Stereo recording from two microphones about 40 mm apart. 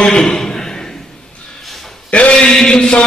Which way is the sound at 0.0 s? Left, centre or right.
Left.